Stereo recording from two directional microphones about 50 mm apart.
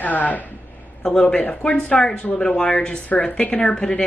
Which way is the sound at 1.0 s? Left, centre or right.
Centre.